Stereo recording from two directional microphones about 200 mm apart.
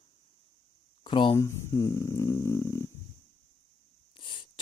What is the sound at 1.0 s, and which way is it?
Speech, 25° left (ahead or behind).